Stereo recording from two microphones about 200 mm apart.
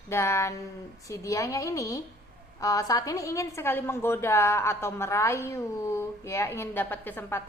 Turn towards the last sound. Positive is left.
turn(degrees=10)  # may be behind; listen again after turning